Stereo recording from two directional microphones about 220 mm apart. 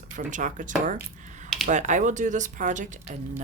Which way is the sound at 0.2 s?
35° right (ahead or behind).